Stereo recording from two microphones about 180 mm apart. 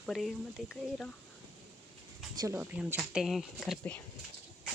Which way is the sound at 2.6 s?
5° right (ahead or behind).